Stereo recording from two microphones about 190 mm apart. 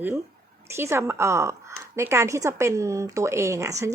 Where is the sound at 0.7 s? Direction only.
15° right (ahead or behind).